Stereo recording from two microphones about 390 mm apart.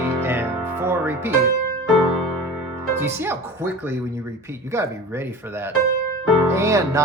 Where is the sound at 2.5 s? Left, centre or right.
Centre.